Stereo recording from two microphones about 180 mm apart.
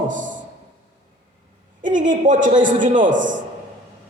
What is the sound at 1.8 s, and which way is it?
A man's voice, 45° right (ahead or behind).